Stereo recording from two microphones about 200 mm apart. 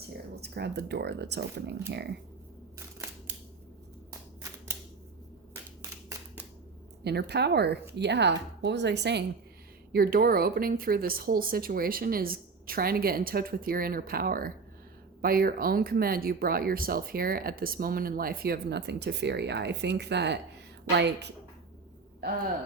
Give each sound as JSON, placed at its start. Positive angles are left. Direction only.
{"t": 0.0, "sound": "speech", "side_deg": -55}
{"t": 5.8, "sound": "a sound", "side_deg": -15}
{"t": 7.0, "sound": "speech", "side_deg": -55}
{"t": 9.9, "sound": "speech", "side_deg": -45}